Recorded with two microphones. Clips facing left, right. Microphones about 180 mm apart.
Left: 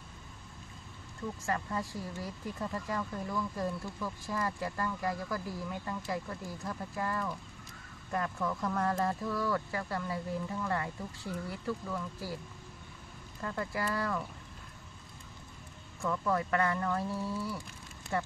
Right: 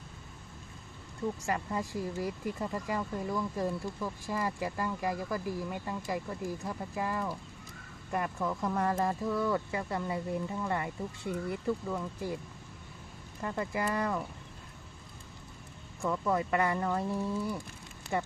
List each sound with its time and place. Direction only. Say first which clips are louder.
1.4 s speech: right 1 dB; 15° right (ahead or behind)
13.4 s speech: right 2 dB; 15° right (ahead or behind)
16.0 s speech: right 1 dB; 15° right (ahead or behind)